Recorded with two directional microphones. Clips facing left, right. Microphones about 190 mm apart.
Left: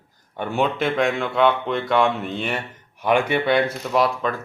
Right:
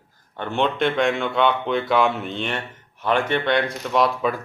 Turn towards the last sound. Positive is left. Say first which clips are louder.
# even
turn(degrees=0)  # may be behind; listen again after turning